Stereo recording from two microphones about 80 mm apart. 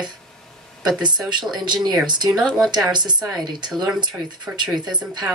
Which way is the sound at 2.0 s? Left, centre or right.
Right.